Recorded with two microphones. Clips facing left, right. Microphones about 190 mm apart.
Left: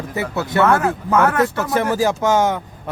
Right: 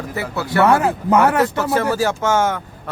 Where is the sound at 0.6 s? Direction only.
15° right (ahead or behind).